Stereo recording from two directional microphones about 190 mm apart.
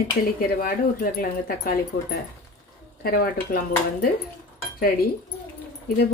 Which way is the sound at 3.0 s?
50° left (ahead or behind).